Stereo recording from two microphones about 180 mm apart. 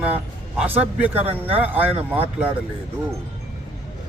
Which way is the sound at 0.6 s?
10° right (ahead or behind).